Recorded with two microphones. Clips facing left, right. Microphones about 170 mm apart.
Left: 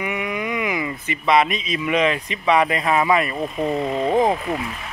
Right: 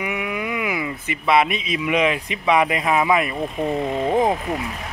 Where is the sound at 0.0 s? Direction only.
5° right (ahead or behind).